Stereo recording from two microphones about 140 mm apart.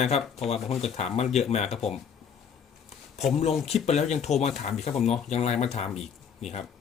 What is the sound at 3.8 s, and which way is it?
Speech, 55° left (ahead or behind).